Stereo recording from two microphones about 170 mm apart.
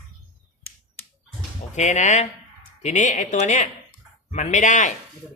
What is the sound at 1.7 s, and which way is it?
Speech, 45° left (ahead or behind).